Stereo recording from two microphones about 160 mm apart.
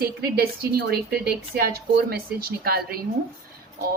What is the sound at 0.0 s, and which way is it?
Speech, 70° right (ahead or behind).